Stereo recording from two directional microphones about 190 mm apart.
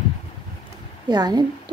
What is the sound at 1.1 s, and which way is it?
Speech, 20° right (ahead or behind).